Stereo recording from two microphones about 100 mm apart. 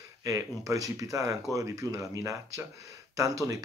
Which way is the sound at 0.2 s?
35° right (ahead or behind).